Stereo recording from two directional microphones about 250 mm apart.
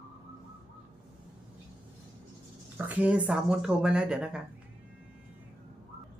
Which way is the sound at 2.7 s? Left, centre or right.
Centre.